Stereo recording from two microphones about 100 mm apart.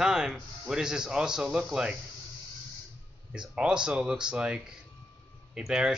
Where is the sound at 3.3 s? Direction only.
5° right (ahead or behind).